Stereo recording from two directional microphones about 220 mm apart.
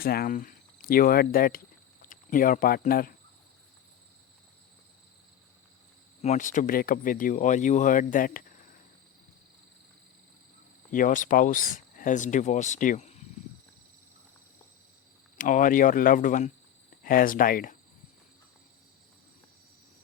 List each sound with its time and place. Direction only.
0.0 s speech: 45° left (ahead or behind)
6.2 s speech: 35° left (ahead or behind)
10.9 s speech: 35° left (ahead or behind)
15.4 s speech: 35° left (ahead or behind)